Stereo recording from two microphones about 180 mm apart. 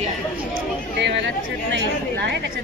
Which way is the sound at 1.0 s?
80° right.